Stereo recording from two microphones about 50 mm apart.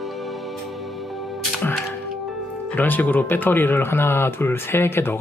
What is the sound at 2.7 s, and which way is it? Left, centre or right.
Speech, left.